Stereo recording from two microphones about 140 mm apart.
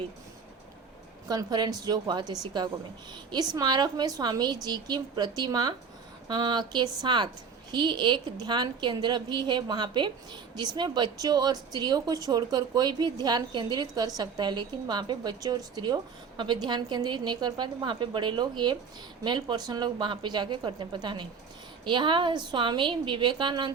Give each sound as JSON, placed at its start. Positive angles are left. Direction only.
{"t": 1.3, "sound": "a woman's voice", "side_deg": -30}